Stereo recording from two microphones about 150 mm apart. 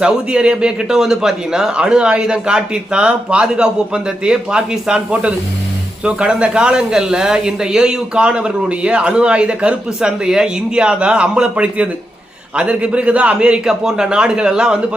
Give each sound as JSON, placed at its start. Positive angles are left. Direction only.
{"t": 0.0, "sound": "speech", "side_deg": -5}